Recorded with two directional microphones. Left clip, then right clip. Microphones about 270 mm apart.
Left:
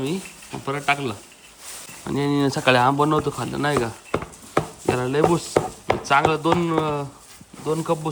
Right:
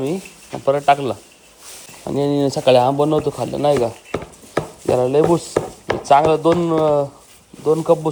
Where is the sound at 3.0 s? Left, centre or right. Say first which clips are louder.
Right 3 dB; left.